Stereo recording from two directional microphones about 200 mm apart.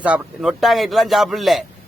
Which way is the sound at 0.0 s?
5° right (ahead or behind).